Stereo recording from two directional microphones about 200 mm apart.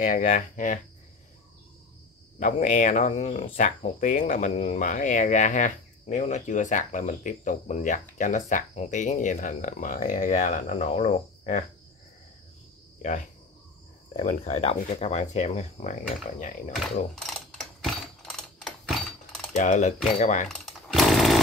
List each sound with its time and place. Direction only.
0.0 s speech: 40° left (ahead or behind)
2.3 s speech: 40° left (ahead or behind)
14.1 s speech: 35° left (ahead or behind)
16.7 s mechanisms: centre (ahead or behind)
19.5 s speech: 35° left (ahead or behind)
20.4 s chainsaw: centre (ahead or behind)